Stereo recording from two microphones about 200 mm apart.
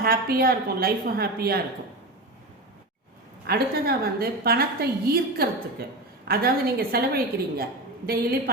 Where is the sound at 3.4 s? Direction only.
50° right (ahead or behind).